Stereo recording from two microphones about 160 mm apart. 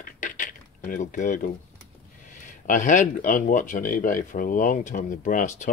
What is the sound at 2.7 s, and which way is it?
Speech, 50° left (ahead or behind).